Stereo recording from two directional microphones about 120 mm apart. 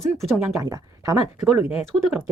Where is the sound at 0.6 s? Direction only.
30° right (ahead or behind).